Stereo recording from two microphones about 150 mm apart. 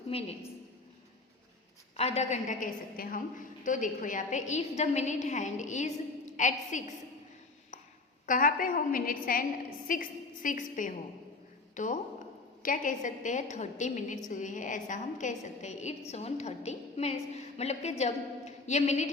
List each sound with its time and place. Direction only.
0.1 s a woman's voice: 40° left (ahead or behind)
2.0 s a woman's voice: 45° left (ahead or behind)
8.3 s a woman's voice: 65° left (ahead or behind); by 19.1 s 50° left (ahead or behind)